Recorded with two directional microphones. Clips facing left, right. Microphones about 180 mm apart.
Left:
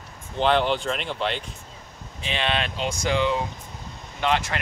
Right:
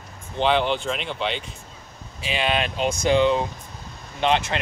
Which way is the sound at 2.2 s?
10° right (ahead or behind).